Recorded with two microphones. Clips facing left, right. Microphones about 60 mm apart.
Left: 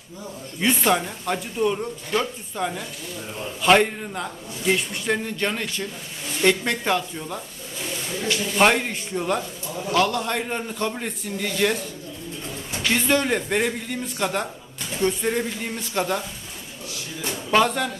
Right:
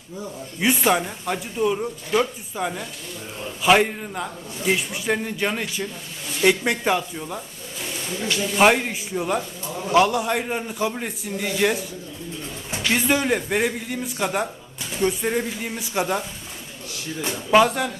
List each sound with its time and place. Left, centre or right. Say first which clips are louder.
0.6 s a man's voice: right 1 dB; centre
9.9 s a man's voice: right 3 dB; centre
17.5 s a man's voice: right 3 dB; centre